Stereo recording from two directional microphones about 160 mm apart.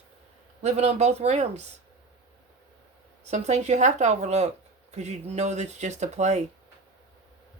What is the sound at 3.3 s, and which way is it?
Speech, 45° right (ahead or behind).